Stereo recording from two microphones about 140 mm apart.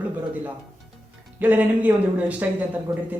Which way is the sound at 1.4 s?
10° right (ahead or behind).